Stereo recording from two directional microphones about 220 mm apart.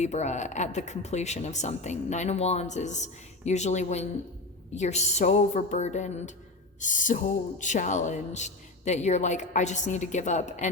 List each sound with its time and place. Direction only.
0.0 s speech: 30° left (ahead or behind)